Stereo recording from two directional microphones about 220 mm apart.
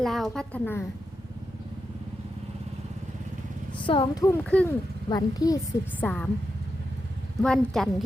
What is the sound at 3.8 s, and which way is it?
Speech, 20° left (ahead or behind).